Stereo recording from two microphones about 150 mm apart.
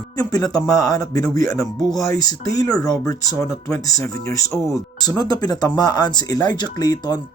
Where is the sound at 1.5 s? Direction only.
Centre (ahead or behind).